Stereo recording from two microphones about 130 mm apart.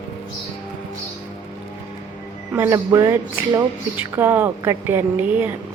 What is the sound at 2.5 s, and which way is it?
Speech, 20° right (ahead or behind).